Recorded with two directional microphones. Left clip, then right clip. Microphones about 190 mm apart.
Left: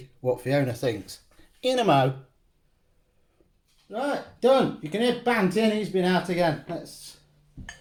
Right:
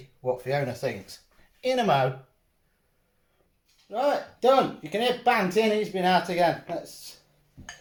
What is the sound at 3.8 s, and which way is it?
Speech, 5° right (ahead or behind).